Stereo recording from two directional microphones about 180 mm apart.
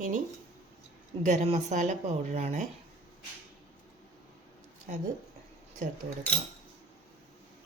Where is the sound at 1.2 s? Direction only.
40° right (ahead or behind).